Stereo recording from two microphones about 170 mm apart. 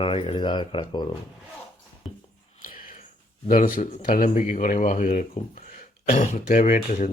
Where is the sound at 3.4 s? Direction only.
50° left (ahead or behind).